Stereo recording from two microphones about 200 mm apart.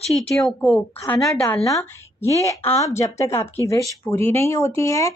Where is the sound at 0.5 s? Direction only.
5° left (ahead or behind).